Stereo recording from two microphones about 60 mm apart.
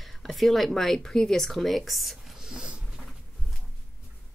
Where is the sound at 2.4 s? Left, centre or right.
Centre.